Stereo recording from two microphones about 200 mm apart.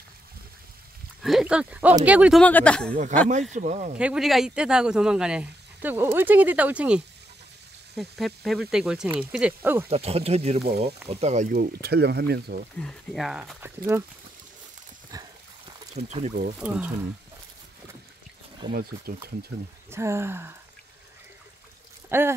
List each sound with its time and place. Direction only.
1.2 s speech: 5° right (ahead or behind)
2.4 s speech: 5° left (ahead or behind)
2.9 s speech: 40° right (ahead or behind)
4.0 s speech: 5° right (ahead or behind)
9.8 s speech: 30° right (ahead or behind); by 12.6 s 50° right (ahead or behind)
12.7 s speech: centre (ahead or behind)
15.0 s horse: 20° right (ahead or behind)
16.0 s speech: 35° right (ahead or behind)
16.5 s speech: 5° right (ahead or behind)
18.7 s speech: 50° right (ahead or behind)
19.9 s speech: 15° right (ahead or behind)
22.1 s speech: 10° right (ahead or behind)